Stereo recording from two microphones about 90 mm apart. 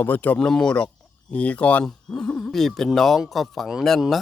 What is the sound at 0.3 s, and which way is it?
Speech, 5° left (ahead or behind).